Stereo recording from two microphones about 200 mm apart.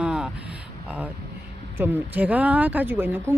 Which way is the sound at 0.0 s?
5° right (ahead or behind).